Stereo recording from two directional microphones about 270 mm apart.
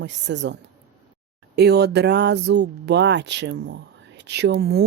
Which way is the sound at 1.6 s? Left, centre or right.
Right.